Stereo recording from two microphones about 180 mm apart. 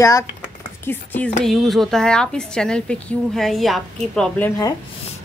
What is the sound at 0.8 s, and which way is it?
Speech, 10° left (ahead or behind).